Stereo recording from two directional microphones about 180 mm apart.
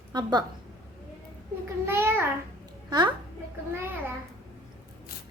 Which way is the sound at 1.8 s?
15° right (ahead or behind).